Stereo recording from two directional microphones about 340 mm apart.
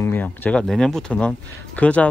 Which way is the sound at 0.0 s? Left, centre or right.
Centre.